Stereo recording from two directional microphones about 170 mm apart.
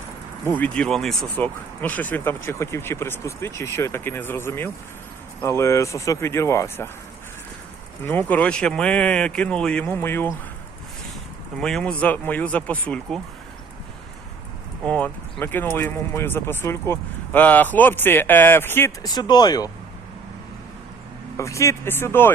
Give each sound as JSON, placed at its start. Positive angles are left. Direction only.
{"t": 0.4, "sound": "speech", "side_deg": 10}
{"t": 8.0, "sound": "speech", "side_deg": 10}
{"t": 11.6, "sound": "speech", "side_deg": 5}
{"t": 14.8, "sound": "speech", "side_deg": 10}
{"t": 19.1, "sound": "speech", "side_deg": 25}
{"t": 21.3, "sound": "speech", "side_deg": 15}